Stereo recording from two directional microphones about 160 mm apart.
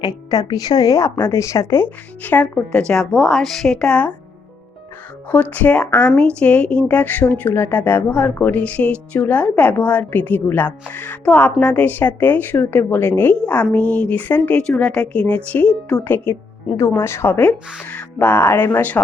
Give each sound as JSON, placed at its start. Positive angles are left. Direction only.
{"t": 0.0, "sound": "speech", "side_deg": 25}
{"t": 5.3, "sound": "speech", "side_deg": 10}